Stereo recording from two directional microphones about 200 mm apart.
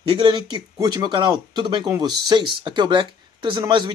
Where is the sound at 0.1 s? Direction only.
20° right (ahead or behind).